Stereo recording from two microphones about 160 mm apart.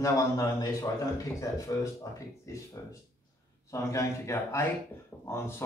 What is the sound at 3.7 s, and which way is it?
A man's voice, 20° left (ahead or behind).